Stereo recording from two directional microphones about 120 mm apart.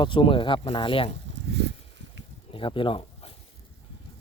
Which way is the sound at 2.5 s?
45° left (ahead or behind).